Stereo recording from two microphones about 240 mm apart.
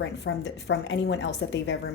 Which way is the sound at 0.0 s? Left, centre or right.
Left.